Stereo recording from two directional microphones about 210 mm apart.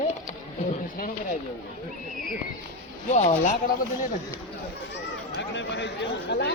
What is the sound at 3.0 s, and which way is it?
Speech, 35° left (ahead or behind).